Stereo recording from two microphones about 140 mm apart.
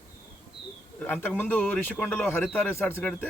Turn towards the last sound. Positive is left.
turn(degrees=15)  # may be behind; listen again after turning